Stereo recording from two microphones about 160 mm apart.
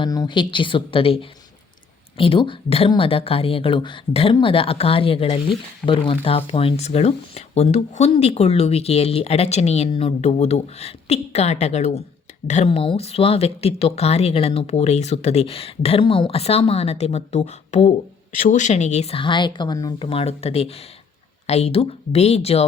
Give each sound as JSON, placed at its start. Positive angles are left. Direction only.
{"t": 0.0, "sound": "speech", "side_deg": 25}